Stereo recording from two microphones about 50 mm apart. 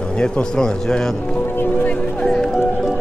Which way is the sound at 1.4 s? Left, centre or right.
Left.